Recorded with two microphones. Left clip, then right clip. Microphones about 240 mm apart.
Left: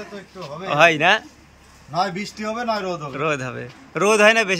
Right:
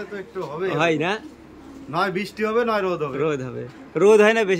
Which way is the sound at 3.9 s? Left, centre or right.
Centre.